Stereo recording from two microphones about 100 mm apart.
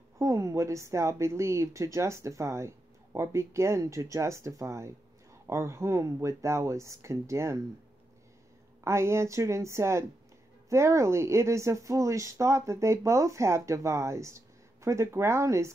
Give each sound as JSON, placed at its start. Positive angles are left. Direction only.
{"t": 0.2, "sound": "speech", "side_deg": -30}
{"t": 8.8, "sound": "speech", "side_deg": -25}